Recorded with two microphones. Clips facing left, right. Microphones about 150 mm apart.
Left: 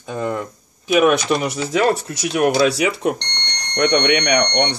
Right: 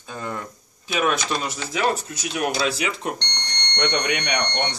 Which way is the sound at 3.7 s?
70° left (ahead or behind).